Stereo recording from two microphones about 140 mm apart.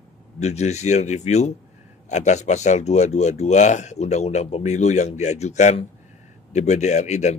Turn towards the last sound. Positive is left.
turn(degrees=55)  # may be behind; listen again after turning